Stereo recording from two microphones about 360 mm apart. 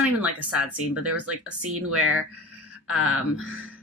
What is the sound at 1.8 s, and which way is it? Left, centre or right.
Speech, right.